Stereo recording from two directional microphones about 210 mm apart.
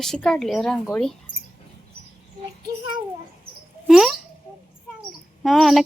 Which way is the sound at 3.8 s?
Centre (ahead or behind).